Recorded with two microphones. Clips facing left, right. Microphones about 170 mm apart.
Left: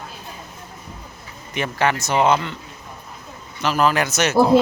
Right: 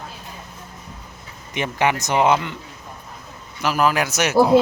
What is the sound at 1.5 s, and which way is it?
Speech, 15° right (ahead or behind).